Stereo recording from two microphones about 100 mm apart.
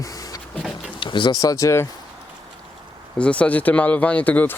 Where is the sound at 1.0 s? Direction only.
50° left (ahead or behind).